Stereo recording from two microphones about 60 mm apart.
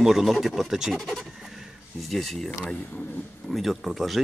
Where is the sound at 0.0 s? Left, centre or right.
Centre.